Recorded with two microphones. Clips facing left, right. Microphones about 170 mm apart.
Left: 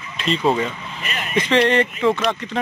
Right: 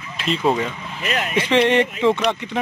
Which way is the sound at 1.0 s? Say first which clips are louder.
Right 7 dB; 90° right.